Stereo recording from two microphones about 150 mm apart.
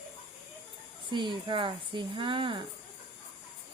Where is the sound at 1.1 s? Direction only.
30° right (ahead or behind).